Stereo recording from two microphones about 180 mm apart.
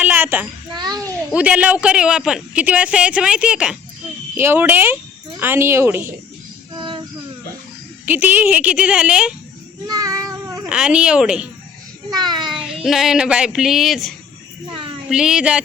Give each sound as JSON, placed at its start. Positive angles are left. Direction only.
{"t": 0.0, "sound": "a sound", "side_deg": -10}
{"t": 0.8, "sound": "a child's voice", "side_deg": -20}
{"t": 1.3, "sound": "speech", "side_deg": -5}
{"t": 6.7, "sound": "music", "side_deg": -25}
{"t": 8.0, "sound": "speech", "side_deg": -10}
{"t": 9.8, "sound": "child singing", "side_deg": -20}
{"t": 10.7, "sound": "speech", "side_deg": -5}
{"t": 12.1, "sound": "child singing", "side_deg": -25}
{"t": 12.5, "sound": "speech", "side_deg": -5}
{"t": 14.7, "sound": "a sound", "side_deg": -30}
{"t": 15.1, "sound": "speech", "side_deg": -5}